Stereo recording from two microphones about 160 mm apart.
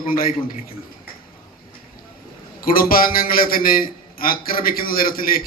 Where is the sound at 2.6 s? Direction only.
65° left (ahead or behind).